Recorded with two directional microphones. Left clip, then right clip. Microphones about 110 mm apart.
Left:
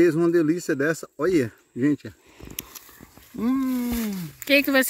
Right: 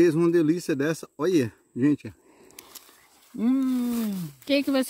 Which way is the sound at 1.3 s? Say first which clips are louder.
Left 1 dB; 45° right (ahead or behind).